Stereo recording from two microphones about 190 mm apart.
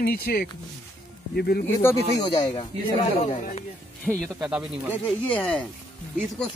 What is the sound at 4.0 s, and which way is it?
Speech, centre (ahead or behind).